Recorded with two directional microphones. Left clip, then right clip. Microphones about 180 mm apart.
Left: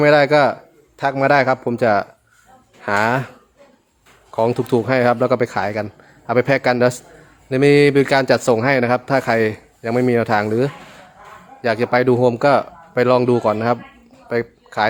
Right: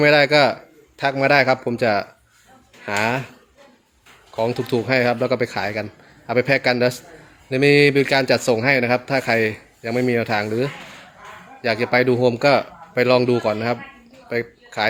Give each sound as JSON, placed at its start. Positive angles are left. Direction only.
{"t": 0.0, "sound": "a man's voice", "side_deg": 10}
{"t": 4.4, "sound": "a man's voice", "side_deg": 20}
{"t": 14.3, "sound": "a sound", "side_deg": 20}